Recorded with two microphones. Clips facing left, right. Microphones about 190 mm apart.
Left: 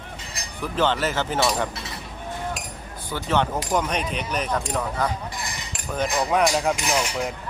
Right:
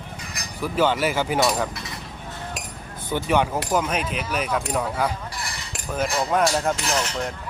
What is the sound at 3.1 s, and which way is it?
Speech, 15° right (ahead or behind).